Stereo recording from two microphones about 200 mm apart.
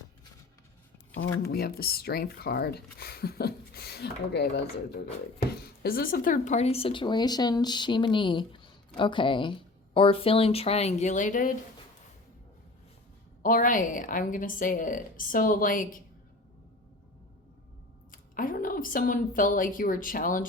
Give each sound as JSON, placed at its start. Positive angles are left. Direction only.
{"t": 1.5, "sound": "speech", "side_deg": 50}
{"t": 13.4, "sound": "speech", "side_deg": 40}
{"t": 18.1, "sound": "speech", "side_deg": 45}